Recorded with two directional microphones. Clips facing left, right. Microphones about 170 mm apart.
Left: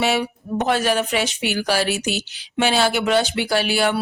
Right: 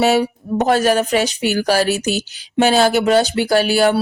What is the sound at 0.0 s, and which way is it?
Speech, 40° right (ahead or behind).